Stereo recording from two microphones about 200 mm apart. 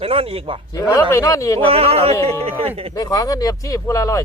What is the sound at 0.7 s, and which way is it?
Speech, 15° left (ahead or behind).